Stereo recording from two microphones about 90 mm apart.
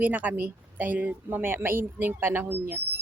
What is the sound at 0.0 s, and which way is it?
A woman's voice, 20° right (ahead or behind).